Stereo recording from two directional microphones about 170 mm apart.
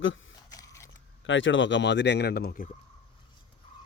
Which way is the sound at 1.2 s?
90° left.